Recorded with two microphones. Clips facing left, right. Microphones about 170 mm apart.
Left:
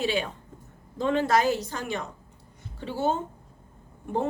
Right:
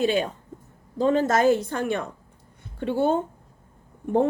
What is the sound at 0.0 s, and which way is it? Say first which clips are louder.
A woman's voice: right 5 dB; 45° right (ahead or behind).